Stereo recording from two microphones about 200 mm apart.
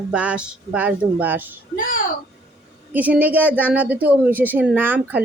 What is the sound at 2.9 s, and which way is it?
A woman's voice, 10° right (ahead or behind).